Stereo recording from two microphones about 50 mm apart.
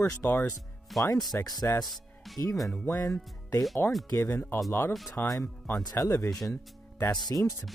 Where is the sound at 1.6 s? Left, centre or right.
Left.